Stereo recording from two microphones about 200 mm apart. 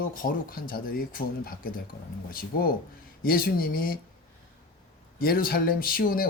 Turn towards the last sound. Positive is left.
turn(degrees=45)  # may be behind; listen again after turning